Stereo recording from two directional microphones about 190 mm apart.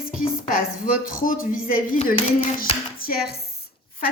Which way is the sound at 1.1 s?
45° left (ahead or behind).